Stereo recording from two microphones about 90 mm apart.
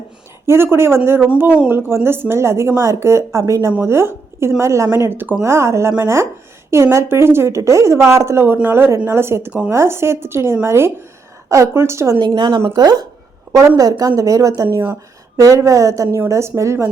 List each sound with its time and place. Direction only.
0.4 s a woman's voice: 25° right (ahead or behind)
12.2 s a woman's voice: 55° right (ahead or behind); by 16.9 s 30° right (ahead or behind)